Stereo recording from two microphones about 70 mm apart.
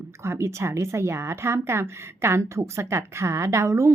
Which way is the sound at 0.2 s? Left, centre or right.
Right.